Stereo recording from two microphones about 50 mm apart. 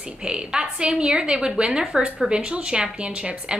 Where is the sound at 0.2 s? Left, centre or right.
Centre.